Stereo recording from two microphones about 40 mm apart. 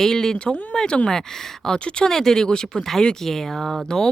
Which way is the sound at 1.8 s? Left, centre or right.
Left.